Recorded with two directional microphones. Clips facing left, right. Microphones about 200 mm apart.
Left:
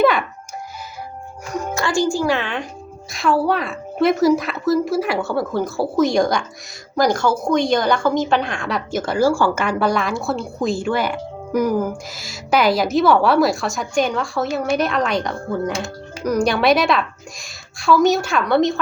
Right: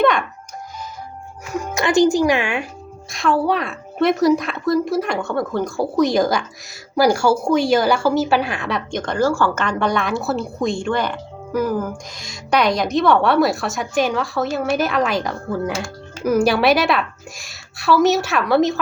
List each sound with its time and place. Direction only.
0.0 s music: 5° left (ahead or behind)
1.7 s speech: 20° right (ahead or behind)
3.1 s a woman's voice: centre (ahead or behind)